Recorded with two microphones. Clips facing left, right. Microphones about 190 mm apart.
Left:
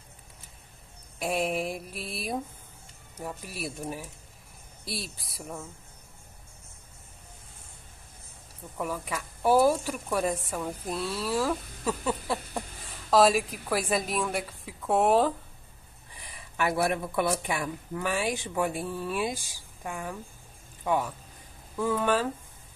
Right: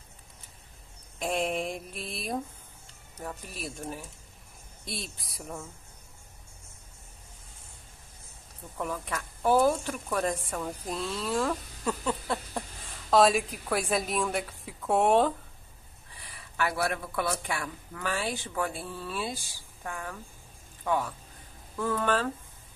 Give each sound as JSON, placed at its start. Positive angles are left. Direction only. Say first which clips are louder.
{"t": 1.2, "sound": "a woman's voice", "louder": "left 1 dB", "side_deg": 5}
{"t": 8.7, "sound": "a woman's voice", "louder": "left 1 dB", "side_deg": 5}
{"t": 16.3, "sound": "speech", "louder": "left 2 dB", "side_deg": 20}